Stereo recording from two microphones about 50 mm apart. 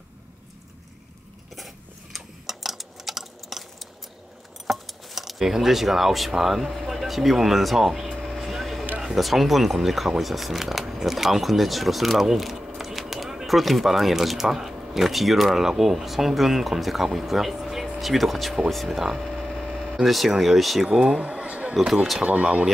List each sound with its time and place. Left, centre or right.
2.1 s a sound: centre
4.6 s speech: centre
20.8 s speech: centre